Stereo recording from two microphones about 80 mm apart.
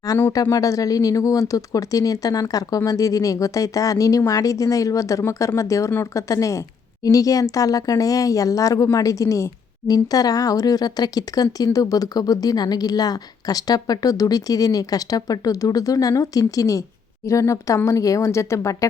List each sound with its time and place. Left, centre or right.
0.5 s speech: left